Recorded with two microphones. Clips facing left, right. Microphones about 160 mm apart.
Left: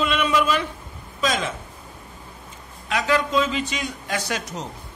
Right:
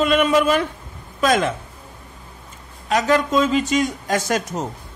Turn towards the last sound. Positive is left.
turn(degrees=-45)  # may be behind; listen again after turning